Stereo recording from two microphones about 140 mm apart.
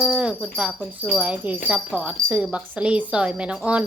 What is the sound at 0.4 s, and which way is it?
A woman's voice, 5° right (ahead or behind).